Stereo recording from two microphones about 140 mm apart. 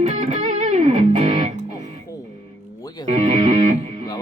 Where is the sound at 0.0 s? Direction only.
50° right (ahead or behind).